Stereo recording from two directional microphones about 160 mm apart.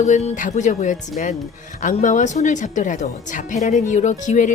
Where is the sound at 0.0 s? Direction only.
45° left (ahead or behind).